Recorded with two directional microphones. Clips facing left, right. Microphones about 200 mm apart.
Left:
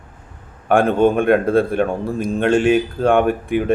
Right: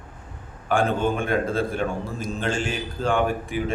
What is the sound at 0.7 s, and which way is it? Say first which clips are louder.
A man's voice: left 8 dB; 60° left (ahead or behind).